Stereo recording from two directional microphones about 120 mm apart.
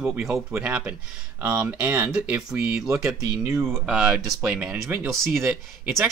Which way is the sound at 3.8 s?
5° right (ahead or behind).